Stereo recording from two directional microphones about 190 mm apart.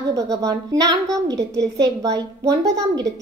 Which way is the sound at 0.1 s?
15° right (ahead or behind).